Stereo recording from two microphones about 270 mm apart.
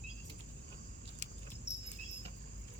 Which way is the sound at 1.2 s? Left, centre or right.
Left.